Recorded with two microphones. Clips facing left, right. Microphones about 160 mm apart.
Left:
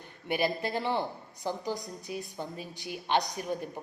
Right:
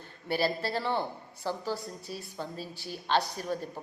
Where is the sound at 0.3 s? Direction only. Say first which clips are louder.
Even; 15° left (ahead or behind).